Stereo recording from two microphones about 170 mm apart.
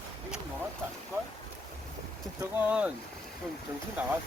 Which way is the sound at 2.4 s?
10° right (ahead or behind).